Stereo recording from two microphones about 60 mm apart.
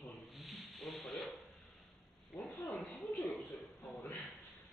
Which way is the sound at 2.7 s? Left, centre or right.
Centre.